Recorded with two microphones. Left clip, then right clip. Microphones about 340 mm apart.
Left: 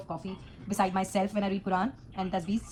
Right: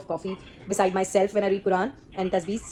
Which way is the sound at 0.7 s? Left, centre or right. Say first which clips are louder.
Right 6 dB; centre.